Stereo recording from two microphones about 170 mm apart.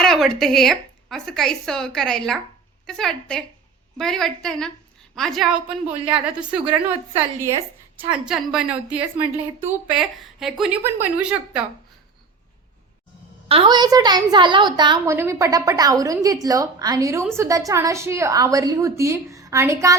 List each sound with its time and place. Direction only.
0.0 s a woman's voice: centre (ahead or behind)
7.9 s a woman's voice: 5° right (ahead or behind)
13.5 s a woman's voice: 30° right (ahead or behind)
15.1 s a woman's voice: 15° right (ahead or behind)